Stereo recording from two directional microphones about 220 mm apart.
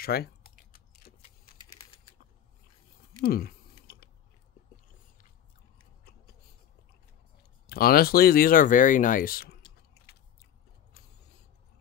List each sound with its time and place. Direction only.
0.0 s typing: 45° left (ahead or behind)
3.2 s typing: 40° left (ahead or behind)
7.6 s speech: 45° left (ahead or behind)